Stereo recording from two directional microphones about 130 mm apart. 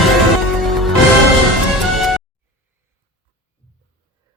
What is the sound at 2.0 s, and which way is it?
Music, centre (ahead or behind).